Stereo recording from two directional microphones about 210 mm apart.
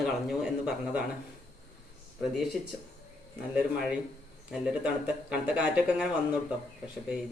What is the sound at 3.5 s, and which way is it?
Speech, 5° right (ahead or behind).